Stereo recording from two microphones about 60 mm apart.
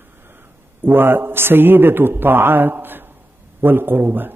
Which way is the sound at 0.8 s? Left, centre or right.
Right.